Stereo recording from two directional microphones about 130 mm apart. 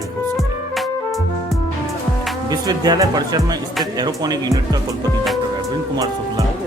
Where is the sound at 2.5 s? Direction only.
30° right (ahead or behind).